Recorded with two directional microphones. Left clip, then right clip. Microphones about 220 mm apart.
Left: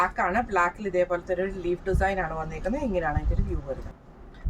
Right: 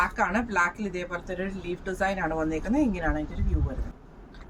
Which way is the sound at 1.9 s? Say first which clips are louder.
Left 1 dB; 15° left (ahead or behind).